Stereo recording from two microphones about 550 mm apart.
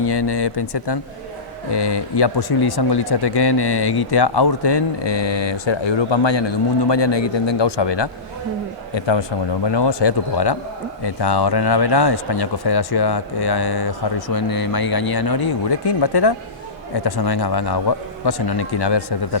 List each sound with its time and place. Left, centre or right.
0.0 s speech: left